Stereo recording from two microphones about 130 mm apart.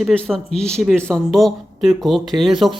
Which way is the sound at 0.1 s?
5° left (ahead or behind).